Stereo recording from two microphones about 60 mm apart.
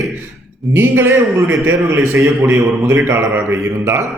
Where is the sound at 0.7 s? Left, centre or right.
Right.